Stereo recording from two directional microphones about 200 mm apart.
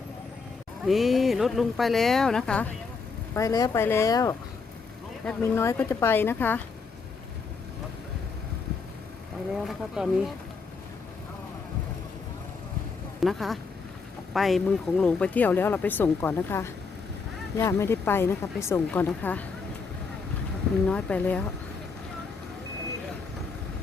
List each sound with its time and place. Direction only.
0.9 s speech: centre (ahead or behind)
3.3 s speech: 15° left (ahead or behind)
9.6 s speech: centre (ahead or behind)
13.1 s speech: centre (ahead or behind)
20.8 s speech: 5° left (ahead or behind)